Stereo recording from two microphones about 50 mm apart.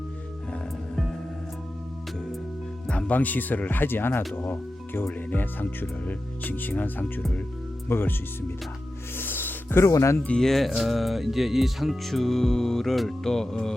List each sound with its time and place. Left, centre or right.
3.1 s speech: left
7.9 s speech: left
9.1 s music: left
9.7 s speech: left
10.3 s music: centre